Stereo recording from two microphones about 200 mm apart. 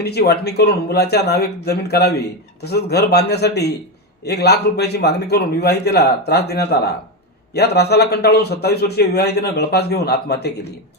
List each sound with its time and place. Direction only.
0.0 s a man's voice: 55° left (ahead or behind)